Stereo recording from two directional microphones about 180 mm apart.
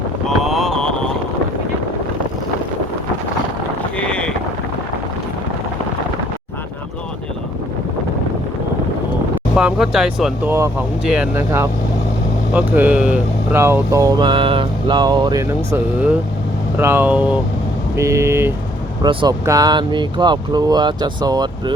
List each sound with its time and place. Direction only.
0.4 s vehicle: centre (ahead or behind)
3.9 s boat: 5° left (ahead or behind)
9.6 s speech: 5° right (ahead or behind)
10.4 s speech: 15° right (ahead or behind)
11.3 s speech: 15° right (ahead or behind)